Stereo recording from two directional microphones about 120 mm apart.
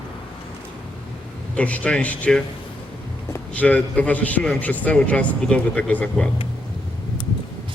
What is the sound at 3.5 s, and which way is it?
A man's voice, 10° left (ahead or behind).